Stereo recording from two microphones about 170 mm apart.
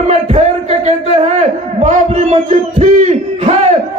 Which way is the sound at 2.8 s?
40° right (ahead or behind).